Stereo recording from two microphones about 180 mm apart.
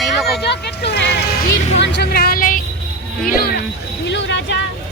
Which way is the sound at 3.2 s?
55° left (ahead or behind).